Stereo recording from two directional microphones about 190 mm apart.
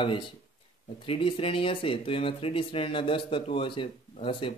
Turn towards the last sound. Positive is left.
turn(degrees=25)  # may be behind; listen again after turning